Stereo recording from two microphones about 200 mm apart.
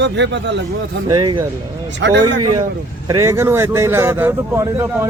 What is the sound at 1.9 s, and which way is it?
Speech, 65° right (ahead or behind).